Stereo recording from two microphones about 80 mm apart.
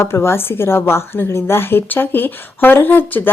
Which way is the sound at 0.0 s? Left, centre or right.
Left.